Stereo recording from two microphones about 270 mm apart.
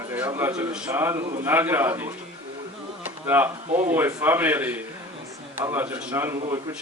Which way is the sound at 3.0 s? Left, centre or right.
Centre.